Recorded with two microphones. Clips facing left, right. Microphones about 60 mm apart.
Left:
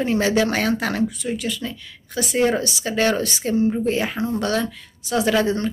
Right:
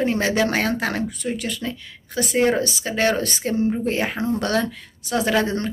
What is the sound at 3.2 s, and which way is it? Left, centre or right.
Speech, right.